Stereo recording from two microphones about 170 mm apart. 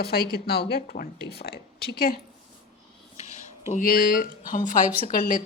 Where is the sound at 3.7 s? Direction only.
55° left (ahead or behind).